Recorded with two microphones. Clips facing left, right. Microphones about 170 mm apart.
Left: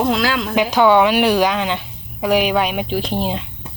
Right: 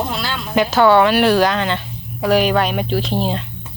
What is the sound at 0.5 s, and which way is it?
A woman's voice, 10° left (ahead or behind).